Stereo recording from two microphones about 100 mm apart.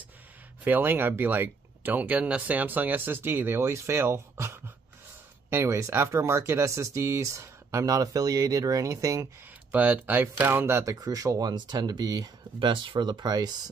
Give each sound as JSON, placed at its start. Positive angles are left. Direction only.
{"t": 0.7, "sound": "speech", "side_deg": -20}
{"t": 9.7, "sound": "speech", "side_deg": -15}
{"t": 12.5, "sound": "speech", "side_deg": -55}